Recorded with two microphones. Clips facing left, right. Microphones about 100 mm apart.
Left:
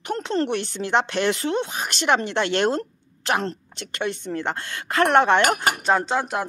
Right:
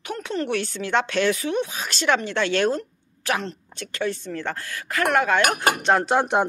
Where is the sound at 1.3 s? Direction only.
55° left (ahead or behind).